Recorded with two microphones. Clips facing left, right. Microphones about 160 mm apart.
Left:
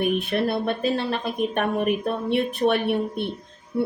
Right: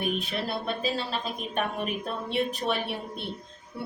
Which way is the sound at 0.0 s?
55° left (ahead or behind).